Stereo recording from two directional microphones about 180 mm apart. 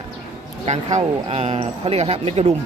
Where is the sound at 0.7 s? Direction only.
35° right (ahead or behind).